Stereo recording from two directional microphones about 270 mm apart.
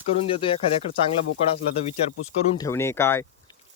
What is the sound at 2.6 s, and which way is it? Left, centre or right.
Speech, centre.